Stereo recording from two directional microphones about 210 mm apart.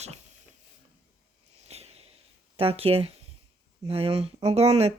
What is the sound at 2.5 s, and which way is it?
Speech, 30° right (ahead or behind).